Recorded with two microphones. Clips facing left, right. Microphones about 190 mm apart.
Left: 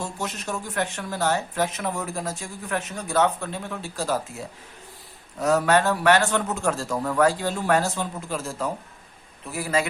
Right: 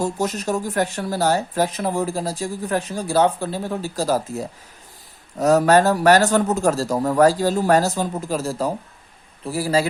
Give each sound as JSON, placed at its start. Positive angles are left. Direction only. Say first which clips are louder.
{"t": 0.0, "sound": "speech", "louder": "right 8 dB", "side_deg": -40}